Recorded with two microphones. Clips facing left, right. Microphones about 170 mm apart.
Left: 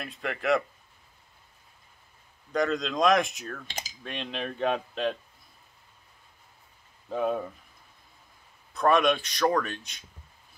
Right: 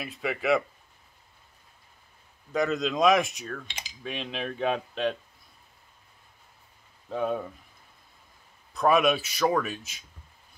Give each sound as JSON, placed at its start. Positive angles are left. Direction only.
{"t": 0.0, "sound": "speech", "side_deg": -5}
{"t": 2.5, "sound": "speech", "side_deg": -5}
{"t": 3.6, "sound": "speech", "side_deg": 40}
{"t": 4.0, "sound": "speech", "side_deg": 0}
{"t": 7.1, "sound": "speech", "side_deg": 0}
{"t": 8.7, "sound": "speech", "side_deg": -5}